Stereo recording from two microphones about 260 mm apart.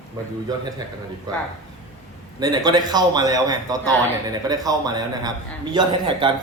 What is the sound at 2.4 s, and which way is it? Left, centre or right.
Speech, centre.